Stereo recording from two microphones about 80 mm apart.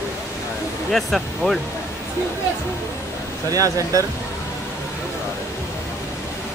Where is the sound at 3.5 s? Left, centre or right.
Right.